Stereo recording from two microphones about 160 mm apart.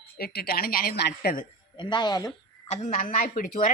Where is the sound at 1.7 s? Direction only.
30° left (ahead or behind).